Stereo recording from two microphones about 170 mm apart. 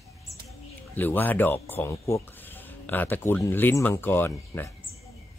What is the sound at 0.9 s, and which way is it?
Speech, 10° left (ahead or behind).